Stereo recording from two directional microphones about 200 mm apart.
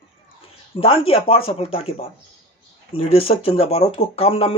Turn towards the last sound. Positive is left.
turn(degrees=30)  # may be behind; listen again after turning